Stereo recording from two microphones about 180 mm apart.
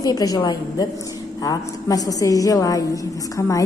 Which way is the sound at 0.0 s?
20° left (ahead or behind).